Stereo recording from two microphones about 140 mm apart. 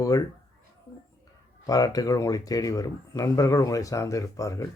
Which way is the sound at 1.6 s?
25° left (ahead or behind).